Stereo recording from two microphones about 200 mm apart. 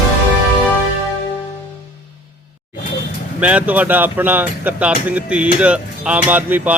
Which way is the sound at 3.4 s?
10° right (ahead or behind).